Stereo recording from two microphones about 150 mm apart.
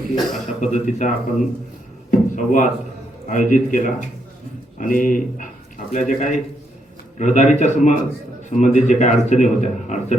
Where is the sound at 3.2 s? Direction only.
60° left (ahead or behind).